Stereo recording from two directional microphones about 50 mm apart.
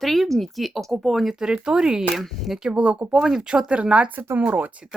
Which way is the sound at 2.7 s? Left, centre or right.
Right.